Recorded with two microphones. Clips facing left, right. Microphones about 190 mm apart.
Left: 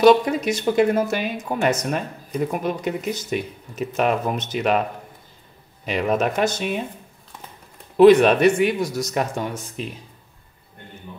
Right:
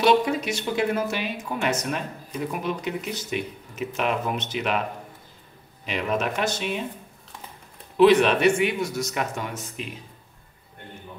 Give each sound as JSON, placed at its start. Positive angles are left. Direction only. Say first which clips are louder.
{"t": 0.0, "sound": "speech", "louder": "left 5 dB", "side_deg": 45}
{"t": 5.9, "sound": "speech", "louder": "left 5 dB", "side_deg": 45}
{"t": 8.0, "sound": "speech", "louder": "left 5 dB", "side_deg": 45}